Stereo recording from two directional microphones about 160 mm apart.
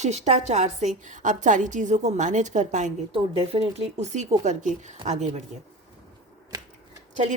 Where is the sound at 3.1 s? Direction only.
40° right (ahead or behind).